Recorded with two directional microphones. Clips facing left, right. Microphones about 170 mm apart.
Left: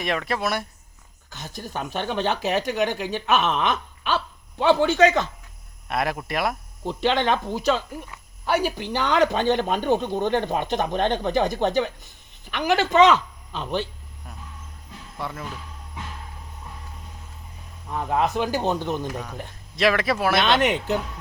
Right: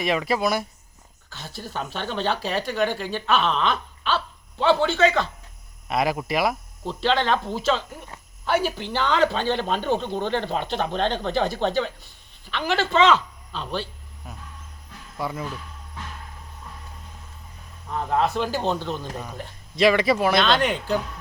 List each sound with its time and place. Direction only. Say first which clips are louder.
0.0 s speech: right 3 dB; centre (ahead or behind)
1.3 s speech: left 1 dB; 15° left (ahead or behind)
5.9 s speech: right 2 dB; centre (ahead or behind)
6.8 s speech: left 1 dB; 15° left (ahead or behind)
14.3 s vehicle: right 2 dB; centre (ahead or behind)
15.2 s speech: right 3 dB; 5° right (ahead or behind)
18.2 s speech: left 1 dB; 15° left (ahead or behind)
19.7 s speech: right 3 dB; centre (ahead or behind)
20.4 s speech: left 1 dB; 20° left (ahead or behind)